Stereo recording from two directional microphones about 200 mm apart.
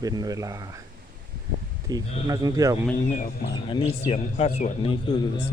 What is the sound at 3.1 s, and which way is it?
Speech, 40° left (ahead or behind).